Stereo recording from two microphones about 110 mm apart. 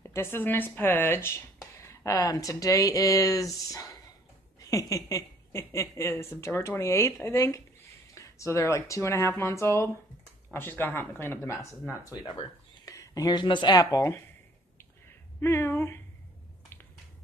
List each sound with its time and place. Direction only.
0.0 s a woman's voice: 25° left (ahead or behind); by 13.8 s 45° left (ahead or behind)
13.8 s speech: 25° left (ahead or behind)
15.4 s speech: 20° left (ahead or behind)